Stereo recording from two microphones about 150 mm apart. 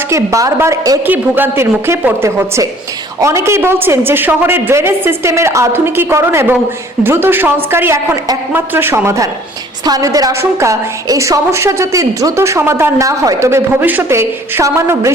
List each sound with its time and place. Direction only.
0.1 s a woman's voice: 20° right (ahead or behind)